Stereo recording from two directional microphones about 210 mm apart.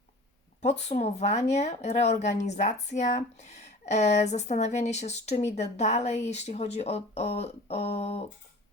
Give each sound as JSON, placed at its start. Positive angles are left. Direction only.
{"t": 0.6, "sound": "speech", "side_deg": 30}